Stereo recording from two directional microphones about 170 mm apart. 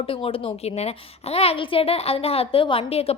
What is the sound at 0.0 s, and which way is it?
A woman's voice, 35° left (ahead or behind).